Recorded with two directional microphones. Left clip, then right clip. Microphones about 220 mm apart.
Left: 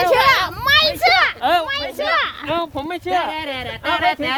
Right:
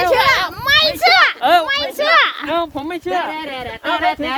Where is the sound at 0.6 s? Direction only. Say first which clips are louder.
Right 2 dB; centre (ahead or behind).